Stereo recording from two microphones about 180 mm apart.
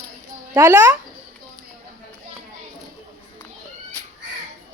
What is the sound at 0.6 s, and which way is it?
Speech, 20° right (ahead or behind).